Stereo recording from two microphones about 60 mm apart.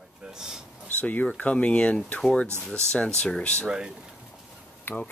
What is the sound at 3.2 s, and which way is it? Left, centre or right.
Speech, centre.